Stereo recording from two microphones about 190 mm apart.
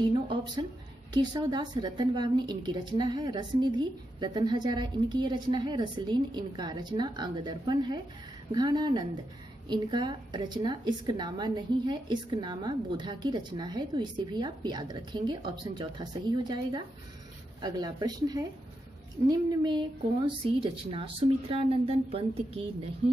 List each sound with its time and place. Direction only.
0.1 s a woman's voice: 20° right (ahead or behind)